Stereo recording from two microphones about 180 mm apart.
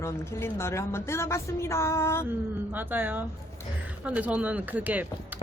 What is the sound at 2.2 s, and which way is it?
Speech, 10° right (ahead or behind).